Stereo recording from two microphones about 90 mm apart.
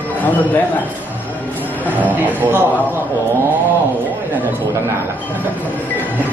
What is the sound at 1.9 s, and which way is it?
Speech, 20° right (ahead or behind).